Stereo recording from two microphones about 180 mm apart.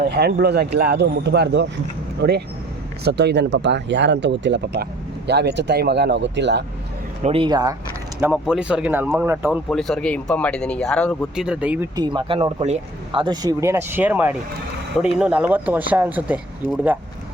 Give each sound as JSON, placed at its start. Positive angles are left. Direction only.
{"t": 0.1, "sound": "speech", "side_deg": -65}
{"t": 7.2, "sound": "speech", "side_deg": -35}
{"t": 8.2, "sound": "speech", "side_deg": -5}
{"t": 9.6, "sound": "speech", "side_deg": 5}
{"t": 11.9, "sound": "speech", "side_deg": -25}
{"t": 13.2, "sound": "speech", "side_deg": -20}